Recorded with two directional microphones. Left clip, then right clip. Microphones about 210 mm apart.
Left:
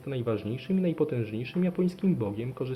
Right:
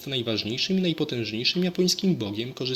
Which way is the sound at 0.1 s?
30° right (ahead or behind).